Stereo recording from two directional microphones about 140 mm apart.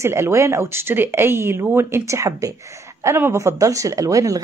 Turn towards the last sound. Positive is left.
turn(degrees=-25)  # may be behind; listen again after turning